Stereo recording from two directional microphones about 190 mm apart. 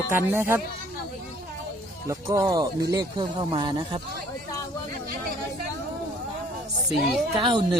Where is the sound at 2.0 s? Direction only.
15° right (ahead or behind).